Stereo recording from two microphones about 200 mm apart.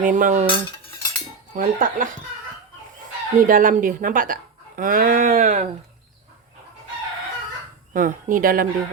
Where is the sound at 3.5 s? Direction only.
45° right (ahead or behind).